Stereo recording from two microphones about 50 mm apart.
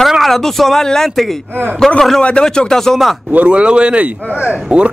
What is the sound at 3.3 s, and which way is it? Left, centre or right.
A man's voice, right.